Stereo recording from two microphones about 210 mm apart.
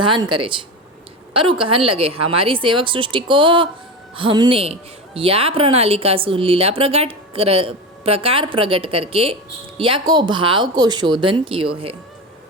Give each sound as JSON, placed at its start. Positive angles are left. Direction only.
{"t": 0.0, "sound": "speech", "side_deg": -20}